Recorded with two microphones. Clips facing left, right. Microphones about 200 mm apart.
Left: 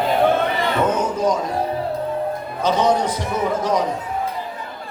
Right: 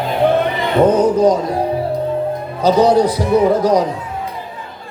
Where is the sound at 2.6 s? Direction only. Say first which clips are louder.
Right 7 dB; 35° right (ahead or behind).